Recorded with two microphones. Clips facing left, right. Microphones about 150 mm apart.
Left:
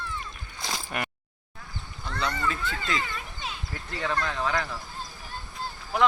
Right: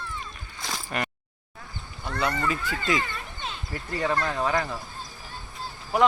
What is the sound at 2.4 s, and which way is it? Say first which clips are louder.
Speech: right 2 dB; 10° right (ahead or behind).